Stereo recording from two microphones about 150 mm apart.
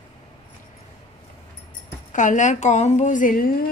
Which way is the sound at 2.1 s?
55° left (ahead or behind).